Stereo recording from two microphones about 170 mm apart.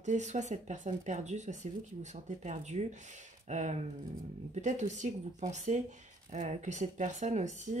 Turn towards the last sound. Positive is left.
turn(degrees=-45)  # may be behind; listen again after turning